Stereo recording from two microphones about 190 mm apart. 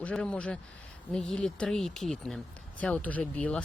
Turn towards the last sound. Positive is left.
turn(degrees=5)  # may be behind; listen again after turning